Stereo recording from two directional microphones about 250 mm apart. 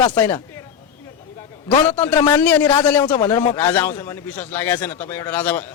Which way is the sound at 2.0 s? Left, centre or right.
Centre.